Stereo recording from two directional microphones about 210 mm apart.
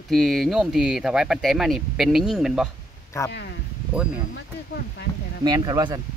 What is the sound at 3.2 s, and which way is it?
Speech, 15° left (ahead or behind).